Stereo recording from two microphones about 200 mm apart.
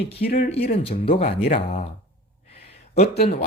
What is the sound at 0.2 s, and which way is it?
Speech, 50° left (ahead or behind).